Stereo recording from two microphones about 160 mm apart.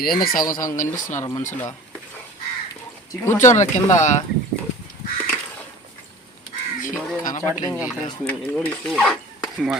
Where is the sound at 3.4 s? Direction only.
45° left (ahead or behind).